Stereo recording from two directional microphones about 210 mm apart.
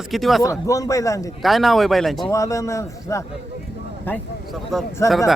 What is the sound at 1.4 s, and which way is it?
Speech, centre (ahead or behind).